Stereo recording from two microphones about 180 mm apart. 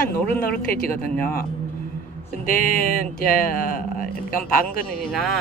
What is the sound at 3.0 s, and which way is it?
Speech, 50° left (ahead or behind).